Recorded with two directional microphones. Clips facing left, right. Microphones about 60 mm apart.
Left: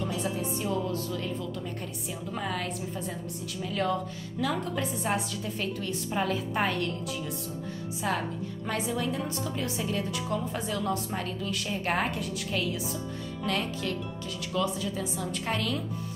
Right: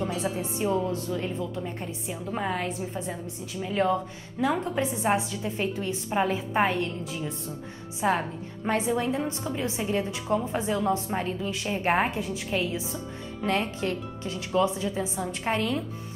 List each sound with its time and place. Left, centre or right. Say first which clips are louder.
0.0 s a woman's voice: right 2 dB; right
8.0 s a woman's voice: right 5 dB; right